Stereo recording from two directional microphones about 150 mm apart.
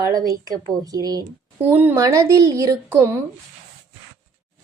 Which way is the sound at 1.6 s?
10° right (ahead or behind).